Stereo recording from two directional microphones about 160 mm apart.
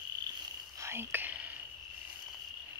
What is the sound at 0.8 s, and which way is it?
Whispering, 15° right (ahead or behind).